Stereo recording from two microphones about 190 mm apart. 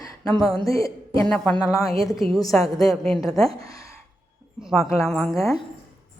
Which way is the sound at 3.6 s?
15° left (ahead or behind).